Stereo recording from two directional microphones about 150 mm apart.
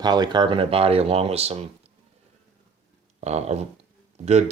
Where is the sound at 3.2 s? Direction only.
45° right (ahead or behind).